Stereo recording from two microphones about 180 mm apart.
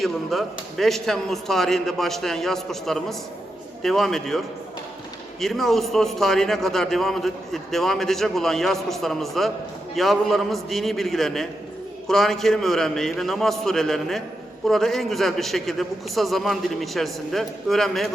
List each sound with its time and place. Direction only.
0.0 s a man's voice: centre (ahead or behind)